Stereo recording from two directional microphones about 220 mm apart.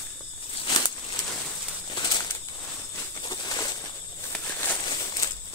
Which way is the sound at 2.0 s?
20° left (ahead or behind).